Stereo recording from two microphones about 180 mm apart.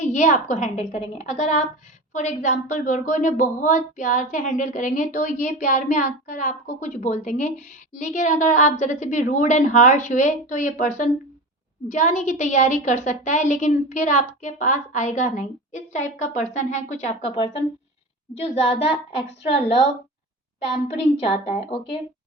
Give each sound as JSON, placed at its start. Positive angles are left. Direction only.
{"t": 0.0, "sound": "a woman's voice", "side_deg": 45}
{"t": 20.8, "sound": "a woman's voice", "side_deg": 35}